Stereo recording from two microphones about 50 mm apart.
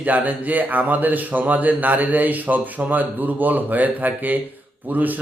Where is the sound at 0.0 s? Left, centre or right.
Right.